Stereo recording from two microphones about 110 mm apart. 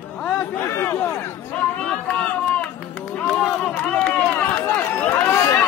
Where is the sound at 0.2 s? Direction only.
5° left (ahead or behind).